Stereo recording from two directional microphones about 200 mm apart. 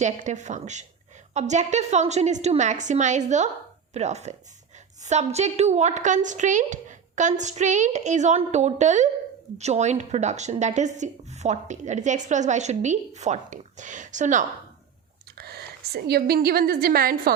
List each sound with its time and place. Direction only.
0.0 s a woman's voice: 35° right (ahead or behind)
15.4 s a woman's voice: 50° right (ahead or behind)